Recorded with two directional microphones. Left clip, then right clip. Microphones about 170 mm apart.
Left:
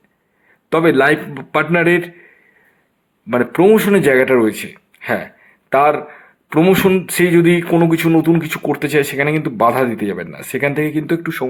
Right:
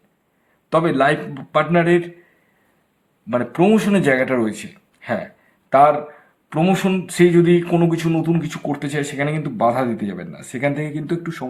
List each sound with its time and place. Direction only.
0.7 s speech: 20° left (ahead or behind)
3.2 s speech: 25° left (ahead or behind)